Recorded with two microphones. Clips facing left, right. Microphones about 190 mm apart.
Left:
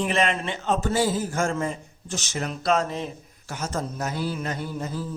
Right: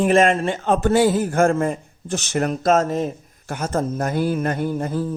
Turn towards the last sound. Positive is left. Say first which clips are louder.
# right 8 dB
turn(degrees=-55)  # may be behind; listen again after turning